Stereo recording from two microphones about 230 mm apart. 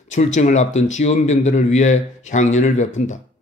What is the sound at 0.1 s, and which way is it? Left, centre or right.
Speech, left.